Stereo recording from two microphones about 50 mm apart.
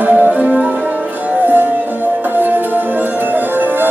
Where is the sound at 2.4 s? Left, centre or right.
Right.